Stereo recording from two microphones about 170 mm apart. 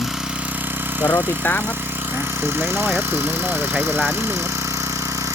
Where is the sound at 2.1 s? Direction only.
10° right (ahead or behind).